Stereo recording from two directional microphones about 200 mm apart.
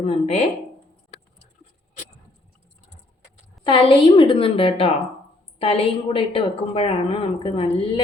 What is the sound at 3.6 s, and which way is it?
Speech, 25° left (ahead or behind).